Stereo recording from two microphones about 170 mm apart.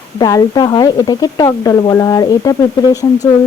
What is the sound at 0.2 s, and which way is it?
A woman's voice, 20° left (ahead or behind).